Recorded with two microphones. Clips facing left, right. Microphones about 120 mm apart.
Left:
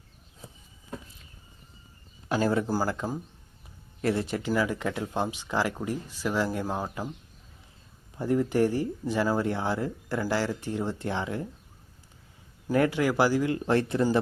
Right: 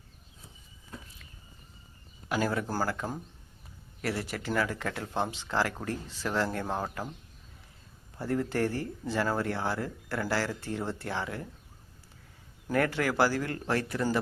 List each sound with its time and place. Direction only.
2.3 s speech: 25° left (ahead or behind)
8.1 s speech: 15° left (ahead or behind)
12.7 s speech: 15° left (ahead or behind)